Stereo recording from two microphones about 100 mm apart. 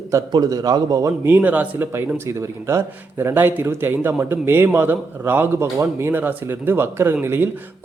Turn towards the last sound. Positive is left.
turn(degrees=-20)  # may be behind; listen again after turning